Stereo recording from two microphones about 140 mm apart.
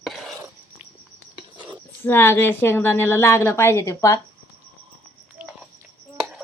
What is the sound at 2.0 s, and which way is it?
A woman's voice, 15° left (ahead or behind).